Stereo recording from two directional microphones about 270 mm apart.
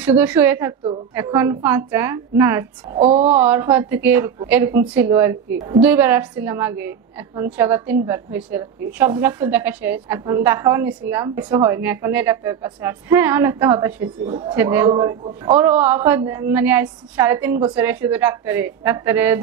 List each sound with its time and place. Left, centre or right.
0.0 s a woman's voice: centre
3.0 s speech: right
3.3 s a woman's voice: centre